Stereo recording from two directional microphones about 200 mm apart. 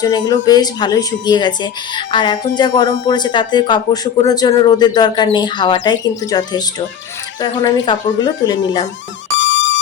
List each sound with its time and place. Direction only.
0.0 s speech: 20° left (ahead or behind)
9.4 s music: 65° left (ahead or behind)